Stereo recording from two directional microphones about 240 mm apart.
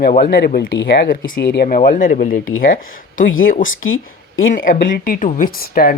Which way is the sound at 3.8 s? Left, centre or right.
Left.